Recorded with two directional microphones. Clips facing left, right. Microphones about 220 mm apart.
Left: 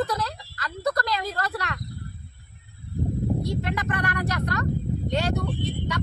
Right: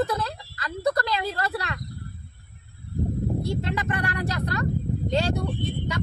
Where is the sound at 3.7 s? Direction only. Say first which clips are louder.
Even; 30° right (ahead or behind).